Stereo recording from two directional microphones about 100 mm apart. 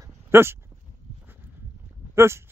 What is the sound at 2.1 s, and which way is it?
Speech, 25° right (ahead or behind).